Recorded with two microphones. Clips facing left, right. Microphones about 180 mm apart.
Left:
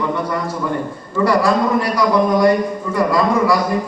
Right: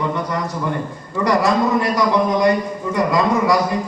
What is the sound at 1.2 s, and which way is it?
A man's voice, 20° right (ahead or behind).